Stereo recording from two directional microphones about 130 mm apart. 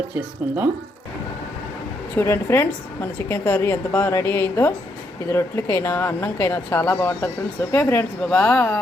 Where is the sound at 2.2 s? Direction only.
20° left (ahead or behind).